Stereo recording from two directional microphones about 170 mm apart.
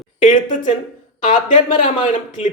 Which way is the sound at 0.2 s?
45° left (ahead or behind).